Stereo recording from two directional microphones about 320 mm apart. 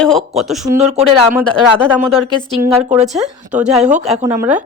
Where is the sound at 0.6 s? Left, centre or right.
Right.